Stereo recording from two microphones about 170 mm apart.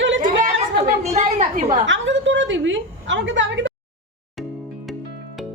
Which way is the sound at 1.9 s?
90° right.